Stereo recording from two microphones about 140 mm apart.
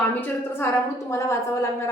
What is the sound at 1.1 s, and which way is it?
Speech, 20° left (ahead or behind).